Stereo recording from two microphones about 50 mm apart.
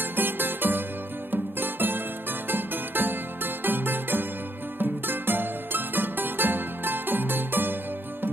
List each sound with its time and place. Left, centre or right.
0.1 s music: right